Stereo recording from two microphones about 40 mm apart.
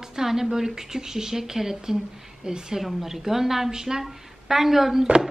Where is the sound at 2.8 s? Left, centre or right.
Centre.